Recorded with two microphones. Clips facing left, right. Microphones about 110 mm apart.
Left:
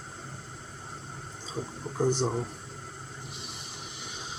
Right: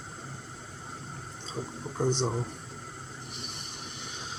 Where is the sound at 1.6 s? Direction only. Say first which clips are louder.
Left 2 dB; 5° left (ahead or behind).